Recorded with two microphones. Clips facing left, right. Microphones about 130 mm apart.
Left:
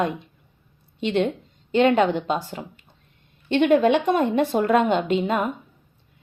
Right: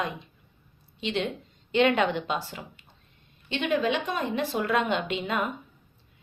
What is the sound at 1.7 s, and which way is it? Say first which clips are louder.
A woman's voice: left 5 dB; 40° left (ahead or behind).